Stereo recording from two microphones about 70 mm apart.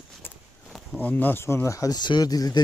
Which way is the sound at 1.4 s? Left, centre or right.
Left.